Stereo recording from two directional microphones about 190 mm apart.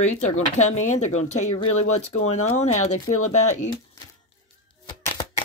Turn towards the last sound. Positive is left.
turn(degrees=30)  # may be behind; listen again after turning